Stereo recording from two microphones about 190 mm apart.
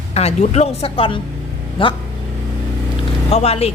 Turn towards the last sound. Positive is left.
turn(degrees=35)  # may be behind; listen again after turning